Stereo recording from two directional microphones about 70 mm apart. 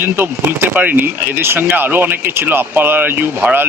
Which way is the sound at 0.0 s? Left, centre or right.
Right.